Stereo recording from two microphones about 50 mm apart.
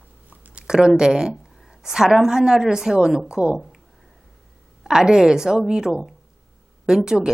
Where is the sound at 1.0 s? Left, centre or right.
Centre.